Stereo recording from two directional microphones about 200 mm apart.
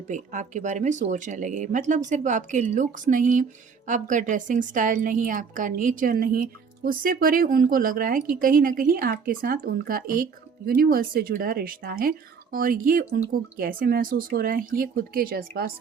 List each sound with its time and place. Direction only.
0.1 s a woman's voice: 40° right (ahead or behind)